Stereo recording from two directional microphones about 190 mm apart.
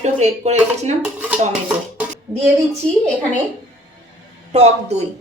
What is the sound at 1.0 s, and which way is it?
Dishes, 10° right (ahead or behind).